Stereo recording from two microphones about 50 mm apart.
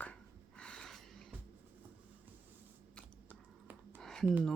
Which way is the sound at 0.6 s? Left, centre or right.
Centre.